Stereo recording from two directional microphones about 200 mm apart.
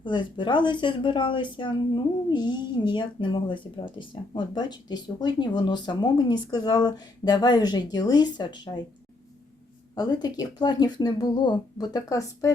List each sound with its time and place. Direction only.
0.0 s speech: 25° left (ahead or behind)
9.9 s speech: 20° left (ahead or behind)